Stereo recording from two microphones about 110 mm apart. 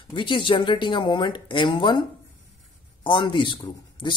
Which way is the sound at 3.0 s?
45° left (ahead or behind).